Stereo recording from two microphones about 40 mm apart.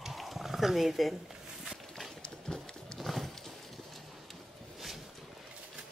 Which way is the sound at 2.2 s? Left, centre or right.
Centre.